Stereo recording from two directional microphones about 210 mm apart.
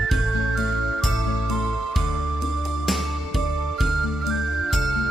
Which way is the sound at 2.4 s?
Centre (ahead or behind).